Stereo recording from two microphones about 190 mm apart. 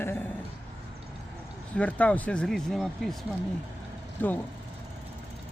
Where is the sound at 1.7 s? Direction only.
5° left (ahead or behind).